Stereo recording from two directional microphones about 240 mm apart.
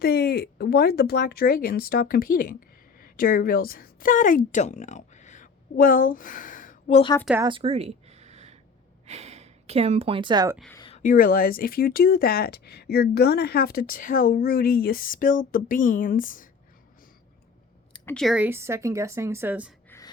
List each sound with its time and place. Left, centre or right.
0.0 s speech: left
7.4 s a sound: right
9.0 s a woman's voice: right
10.8 s speech: left
17.9 s speech: centre
19.9 s gasp: centre